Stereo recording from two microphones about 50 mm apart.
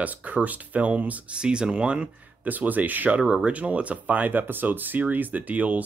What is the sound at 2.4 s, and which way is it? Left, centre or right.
Speech, right.